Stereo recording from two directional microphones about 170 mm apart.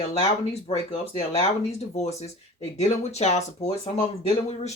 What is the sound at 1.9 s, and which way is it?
Speech, 40° left (ahead or behind).